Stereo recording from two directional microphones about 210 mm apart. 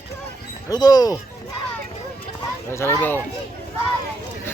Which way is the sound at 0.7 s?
20° left (ahead or behind).